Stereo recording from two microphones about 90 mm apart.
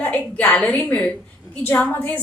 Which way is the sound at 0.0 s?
15° left (ahead or behind).